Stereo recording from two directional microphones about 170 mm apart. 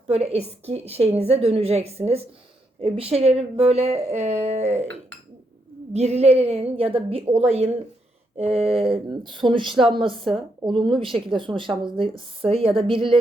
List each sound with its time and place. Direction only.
0.1 s a woman's voice: 40° right (ahead or behind)
5.9 s a woman's voice: 40° right (ahead or behind)